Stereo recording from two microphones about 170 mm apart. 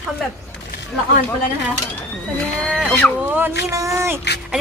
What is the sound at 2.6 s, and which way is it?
Speech, 5° right (ahead or behind).